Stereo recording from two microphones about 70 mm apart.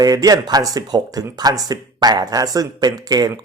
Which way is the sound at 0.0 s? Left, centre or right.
Right.